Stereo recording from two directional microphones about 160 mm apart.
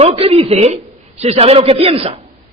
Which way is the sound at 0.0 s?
40° right (ahead or behind).